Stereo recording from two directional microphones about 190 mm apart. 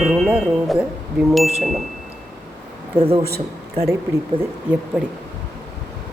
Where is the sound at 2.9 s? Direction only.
30° right (ahead or behind).